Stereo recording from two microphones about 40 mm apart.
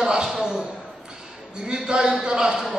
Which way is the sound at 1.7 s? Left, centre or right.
Right.